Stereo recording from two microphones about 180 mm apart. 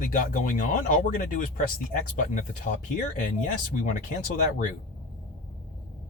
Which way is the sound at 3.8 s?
50° left (ahead or behind).